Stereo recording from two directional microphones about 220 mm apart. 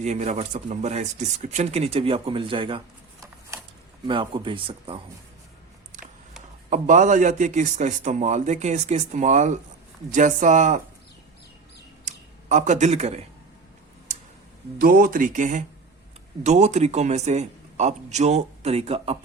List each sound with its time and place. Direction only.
0.0 s speech: 30° right (ahead or behind)
3.5 s a sound: 15° right (ahead or behind)
4.0 s speech: 20° right (ahead or behind)
6.0 s a sound: 35° right (ahead or behind)
6.7 s a man's voice: 35° right (ahead or behind)
12.0 s speech: 35° right (ahead or behind)
14.8 s a man's voice: 40° right (ahead or behind)